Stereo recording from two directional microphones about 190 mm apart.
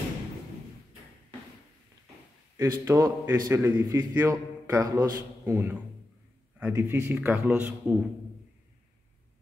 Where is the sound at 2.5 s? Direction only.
15° right (ahead or behind).